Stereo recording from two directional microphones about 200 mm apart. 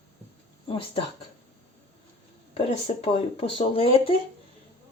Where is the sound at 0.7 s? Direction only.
25° left (ahead or behind).